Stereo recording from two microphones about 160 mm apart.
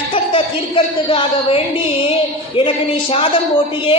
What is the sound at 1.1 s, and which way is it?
Music, 35° left (ahead or behind).